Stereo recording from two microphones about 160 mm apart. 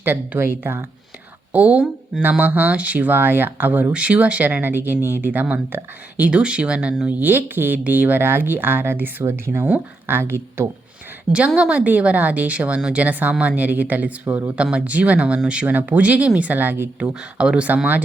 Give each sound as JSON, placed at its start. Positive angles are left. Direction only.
{"t": 0.0, "sound": "speech", "side_deg": -15}
{"t": 4.9, "sound": "speech", "side_deg": 15}
{"t": 5.2, "sound": "speech", "side_deg": -10}